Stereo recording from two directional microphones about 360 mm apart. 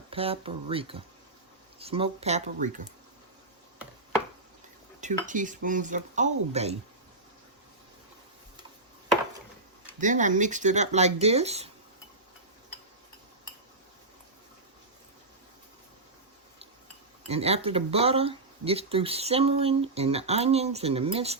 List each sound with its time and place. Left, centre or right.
0.1 s speech: centre
4.9 s speech: right
10.0 s speech: right
17.2 s speech: centre